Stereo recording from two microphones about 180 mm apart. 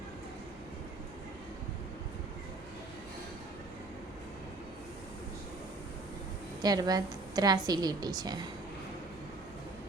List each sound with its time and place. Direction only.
6.6 s a woman's voice: 20° right (ahead or behind)